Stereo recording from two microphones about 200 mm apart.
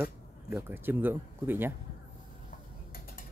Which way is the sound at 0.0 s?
5° right (ahead or behind).